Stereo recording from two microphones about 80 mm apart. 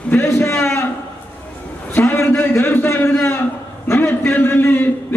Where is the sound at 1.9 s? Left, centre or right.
Left.